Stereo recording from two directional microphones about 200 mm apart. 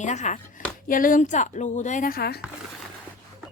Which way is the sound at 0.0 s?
35° left (ahead or behind).